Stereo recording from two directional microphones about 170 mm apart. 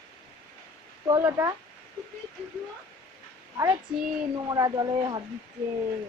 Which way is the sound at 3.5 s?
20° right (ahead or behind).